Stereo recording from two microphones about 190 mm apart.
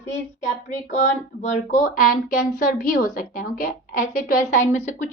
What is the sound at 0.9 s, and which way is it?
Speech, 40° left (ahead or behind).